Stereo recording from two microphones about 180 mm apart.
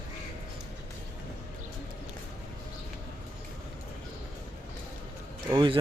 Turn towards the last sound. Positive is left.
turn(degrees=-25)  # may be behind; listen again after turning